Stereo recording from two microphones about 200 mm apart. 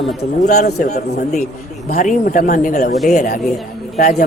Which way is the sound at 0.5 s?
50° left (ahead or behind).